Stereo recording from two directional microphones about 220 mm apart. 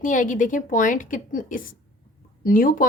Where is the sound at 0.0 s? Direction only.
35° left (ahead or behind).